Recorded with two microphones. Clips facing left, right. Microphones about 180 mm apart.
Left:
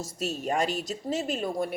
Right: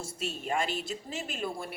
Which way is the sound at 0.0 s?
40° left (ahead or behind).